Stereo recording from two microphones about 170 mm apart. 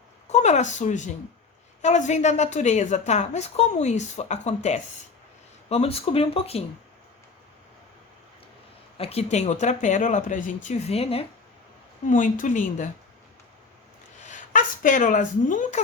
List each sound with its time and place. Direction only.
0.3 s a woman's voice: 40° left (ahead or behind)
9.0 s a woman's voice: 35° left (ahead or behind)
12.0 s a woman's voice: 50° left (ahead or behind)
14.3 s a woman's voice: 50° left (ahead or behind)